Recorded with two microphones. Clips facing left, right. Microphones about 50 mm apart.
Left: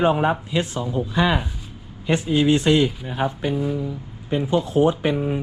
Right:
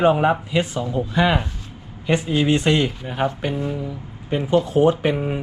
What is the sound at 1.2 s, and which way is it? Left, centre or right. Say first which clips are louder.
Speech: right 2 dB; right.